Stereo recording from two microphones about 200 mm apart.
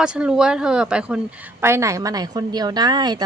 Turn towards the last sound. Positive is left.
turn(degrees=-20)  # may be behind; listen again after turning